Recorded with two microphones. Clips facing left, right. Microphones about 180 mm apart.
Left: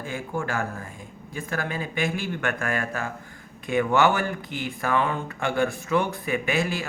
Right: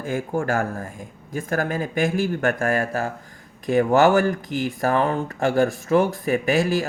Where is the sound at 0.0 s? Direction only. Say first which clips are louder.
Right 6 dB; 45° right (ahead or behind).